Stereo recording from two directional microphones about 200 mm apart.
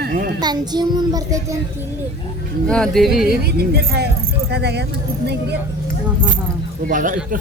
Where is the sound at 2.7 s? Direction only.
Centre (ahead or behind).